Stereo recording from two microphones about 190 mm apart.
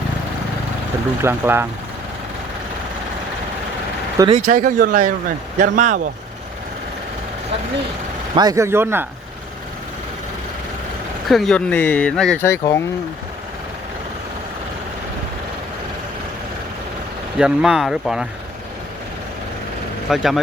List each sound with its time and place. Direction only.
1.2 s speech: 10° right (ahead or behind)
4.4 s speech: 40° right (ahead or behind)
8.4 s speech: 20° right (ahead or behind)
11.3 s speech: centre (ahead or behind)
17.3 s speech: 5° right (ahead or behind)
20.1 s speech: centre (ahead or behind)